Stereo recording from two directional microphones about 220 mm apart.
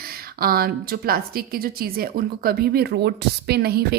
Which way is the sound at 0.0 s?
45° right (ahead or behind).